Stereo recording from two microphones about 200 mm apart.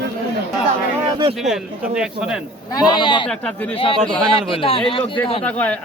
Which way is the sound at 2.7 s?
20° left (ahead or behind).